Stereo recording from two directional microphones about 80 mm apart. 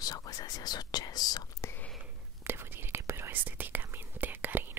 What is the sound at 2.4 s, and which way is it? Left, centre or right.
Whispering, right.